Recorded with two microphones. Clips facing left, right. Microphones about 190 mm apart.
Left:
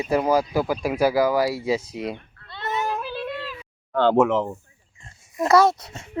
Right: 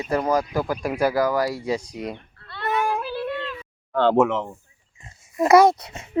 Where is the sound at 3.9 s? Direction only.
Centre (ahead or behind).